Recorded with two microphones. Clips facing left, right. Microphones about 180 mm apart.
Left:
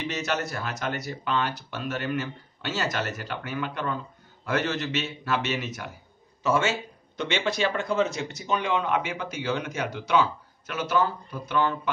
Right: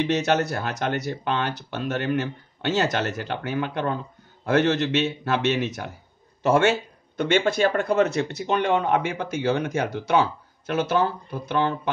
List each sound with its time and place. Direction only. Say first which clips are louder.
0.0 s a man's voice: right 7 dB; 55° right (ahead or behind)
6.4 s speech: right 5 dB; 60° right (ahead or behind)